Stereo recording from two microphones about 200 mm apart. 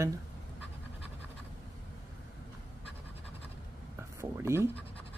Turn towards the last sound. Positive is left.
turn(degrees=-10)  # may be behind; listen again after turning